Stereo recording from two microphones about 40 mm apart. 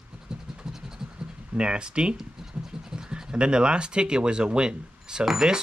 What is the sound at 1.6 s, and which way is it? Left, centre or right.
Speech, right.